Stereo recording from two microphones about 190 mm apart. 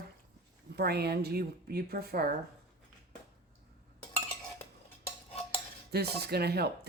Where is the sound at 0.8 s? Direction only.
55° right (ahead or behind).